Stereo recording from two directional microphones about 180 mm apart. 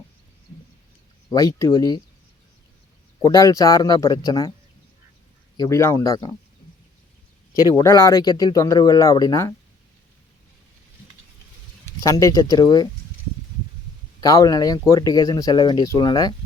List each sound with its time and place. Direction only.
1.3 s speech: 20° left (ahead or behind)
3.2 s speech: 20° left (ahead or behind)
5.5 s speech: 15° left (ahead or behind)
7.7 s speech: 20° left (ahead or behind)
12.0 s speech: 20° left (ahead or behind)
14.2 s speech: 20° left (ahead or behind)